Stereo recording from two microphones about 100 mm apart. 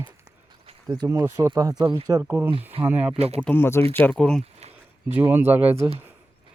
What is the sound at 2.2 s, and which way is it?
Speech, 20° right (ahead or behind).